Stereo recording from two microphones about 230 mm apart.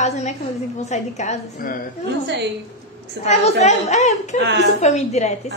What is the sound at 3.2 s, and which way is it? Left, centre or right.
A woman's voice, left.